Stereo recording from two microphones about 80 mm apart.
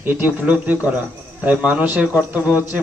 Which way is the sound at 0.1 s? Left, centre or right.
Right.